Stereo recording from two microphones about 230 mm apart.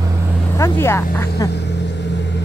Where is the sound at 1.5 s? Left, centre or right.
Left.